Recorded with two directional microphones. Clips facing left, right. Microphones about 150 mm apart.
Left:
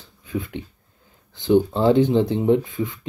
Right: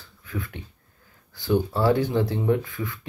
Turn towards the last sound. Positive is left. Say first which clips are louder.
# left 6 dB
turn(degrees=20)  # may be behind; listen again after turning